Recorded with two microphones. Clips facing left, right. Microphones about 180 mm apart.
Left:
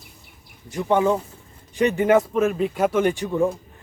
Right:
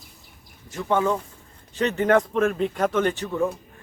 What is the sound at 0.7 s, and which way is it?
A man's voice, 15° left (ahead or behind).